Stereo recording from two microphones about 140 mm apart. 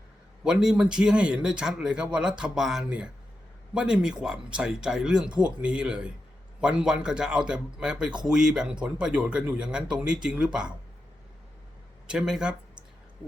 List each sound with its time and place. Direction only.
0.4 s speech: 5° right (ahead or behind)
12.0 s speech: 5° right (ahead or behind)